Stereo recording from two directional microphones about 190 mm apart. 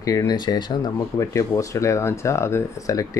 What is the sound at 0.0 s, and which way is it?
Speech, 20° left (ahead or behind).